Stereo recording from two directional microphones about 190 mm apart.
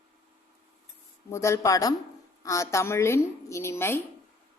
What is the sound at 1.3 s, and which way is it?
A woman's voice, 15° left (ahead or behind).